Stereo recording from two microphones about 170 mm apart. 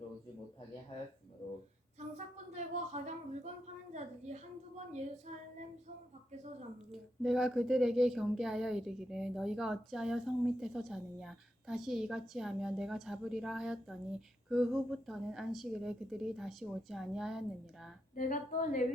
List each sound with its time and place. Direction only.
2.0 s speech: 45° right (ahead or behind)
3.9 s female singing: 40° right (ahead or behind)
6.9 s speech: centre (ahead or behind)
18.1 s speech: 50° left (ahead or behind)